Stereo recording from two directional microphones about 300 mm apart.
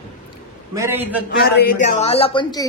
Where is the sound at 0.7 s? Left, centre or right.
Centre.